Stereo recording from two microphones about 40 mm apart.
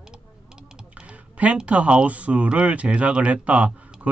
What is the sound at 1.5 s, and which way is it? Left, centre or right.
Speech, right.